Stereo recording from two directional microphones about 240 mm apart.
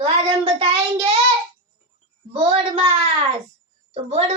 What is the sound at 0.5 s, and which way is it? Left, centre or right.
Child singing, right.